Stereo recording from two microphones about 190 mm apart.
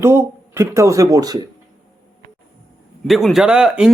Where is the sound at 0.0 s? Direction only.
15° right (ahead or behind).